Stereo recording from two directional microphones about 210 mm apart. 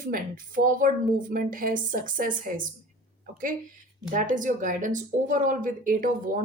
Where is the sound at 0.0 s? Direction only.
40° right (ahead or behind).